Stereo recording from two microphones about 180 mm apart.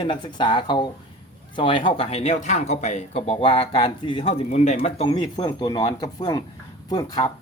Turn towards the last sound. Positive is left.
turn(degrees=20)  # may be behind; listen again after turning